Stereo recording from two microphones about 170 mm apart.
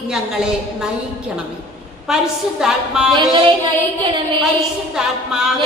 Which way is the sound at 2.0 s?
5° right (ahead or behind).